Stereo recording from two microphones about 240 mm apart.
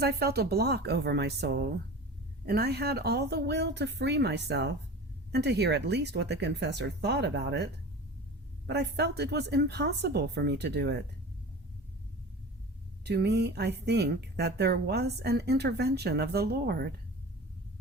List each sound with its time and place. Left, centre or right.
0.0 s speech: right
13.1 s speech: right